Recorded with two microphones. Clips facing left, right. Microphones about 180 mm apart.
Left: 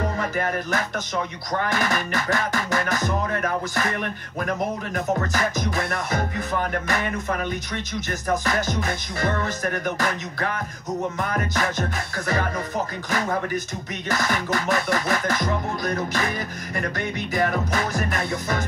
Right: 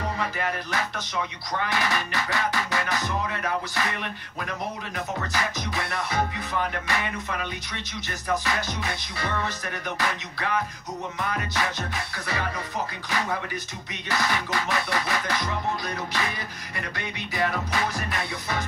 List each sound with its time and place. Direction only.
0.0 s music: 45° left (ahead or behind)